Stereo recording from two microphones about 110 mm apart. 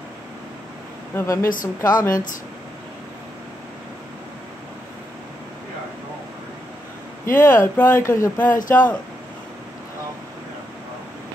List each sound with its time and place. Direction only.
1.1 s speech: 25° left (ahead or behind)
7.2 s speech: 20° left (ahead or behind)
8.4 s speech: 15° left (ahead or behind)